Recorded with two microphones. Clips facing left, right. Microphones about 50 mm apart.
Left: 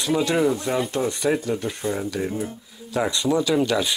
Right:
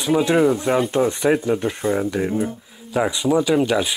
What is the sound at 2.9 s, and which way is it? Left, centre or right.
Speech, centre.